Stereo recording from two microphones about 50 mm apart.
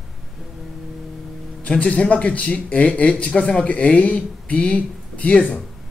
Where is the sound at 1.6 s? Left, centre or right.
Left.